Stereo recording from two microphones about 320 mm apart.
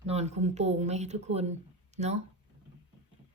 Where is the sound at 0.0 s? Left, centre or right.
Centre.